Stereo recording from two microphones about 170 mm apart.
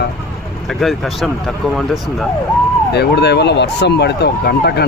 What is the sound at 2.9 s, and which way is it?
Speech, 80° left.